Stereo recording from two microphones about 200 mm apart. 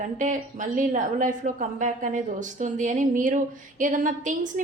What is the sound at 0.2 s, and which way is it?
Speech, 40° right (ahead or behind).